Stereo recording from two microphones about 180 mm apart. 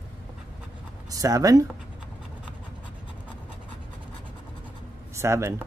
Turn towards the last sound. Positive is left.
turn(degrees=-15)  # may be behind; listen again after turning